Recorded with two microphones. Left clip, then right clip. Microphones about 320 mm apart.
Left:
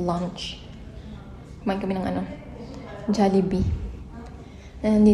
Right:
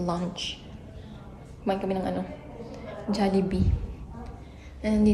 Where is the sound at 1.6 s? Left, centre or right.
Centre.